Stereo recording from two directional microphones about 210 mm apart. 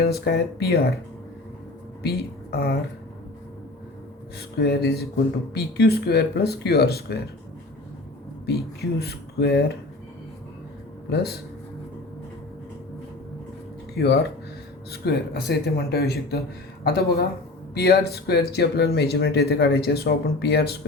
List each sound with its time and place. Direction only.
0.0 s speech: 50° left (ahead or behind)
2.0 s speech: 50° left (ahead or behind)
4.4 s speech: 50° left (ahead or behind)
8.4 s speech: 50° left (ahead or behind)
11.1 s speech: 50° left (ahead or behind)
14.0 s speech: 50° left (ahead or behind)